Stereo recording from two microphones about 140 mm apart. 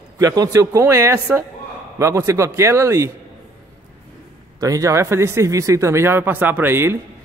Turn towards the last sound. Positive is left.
turn(degrees=-15)  # may be behind; listen again after turning